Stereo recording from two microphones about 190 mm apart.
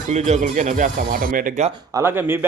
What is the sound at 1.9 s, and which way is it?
Speech, 10° right (ahead or behind).